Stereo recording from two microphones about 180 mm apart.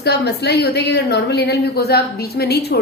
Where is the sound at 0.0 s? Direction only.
65° left (ahead or behind).